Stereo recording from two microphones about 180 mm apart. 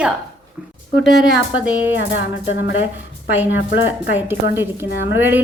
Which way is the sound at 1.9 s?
85° left.